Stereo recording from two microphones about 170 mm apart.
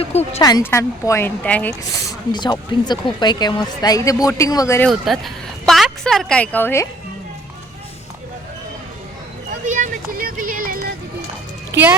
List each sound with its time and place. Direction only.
0.0 s speech: 35° left (ahead or behind)
0.4 s a woman's voice: 20° left (ahead or behind)
2.3 s speech: 25° left (ahead or behind)
4.9 s speech: centre (ahead or behind)
9.5 s speech: 50° right (ahead or behind)
11.7 s speech: 10° right (ahead or behind)